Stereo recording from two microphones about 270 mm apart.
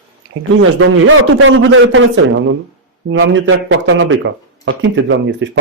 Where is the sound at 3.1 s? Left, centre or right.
Right.